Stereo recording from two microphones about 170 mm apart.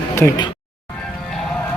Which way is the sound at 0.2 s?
20° left (ahead or behind).